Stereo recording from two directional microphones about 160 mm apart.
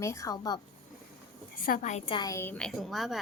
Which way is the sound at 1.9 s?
35° left (ahead or behind).